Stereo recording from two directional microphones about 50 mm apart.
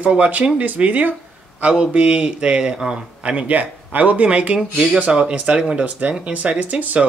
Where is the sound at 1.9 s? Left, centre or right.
Right.